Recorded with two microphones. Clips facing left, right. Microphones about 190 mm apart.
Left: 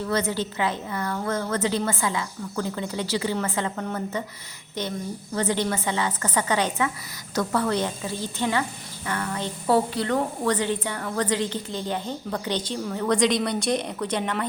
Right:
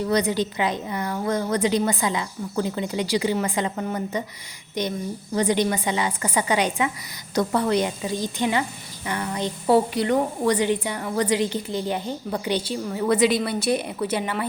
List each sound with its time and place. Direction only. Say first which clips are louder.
0.0 s a woman's voice: right 4 dB; 15° right (ahead or behind)